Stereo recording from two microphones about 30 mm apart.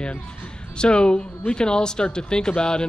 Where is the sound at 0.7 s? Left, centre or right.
Left.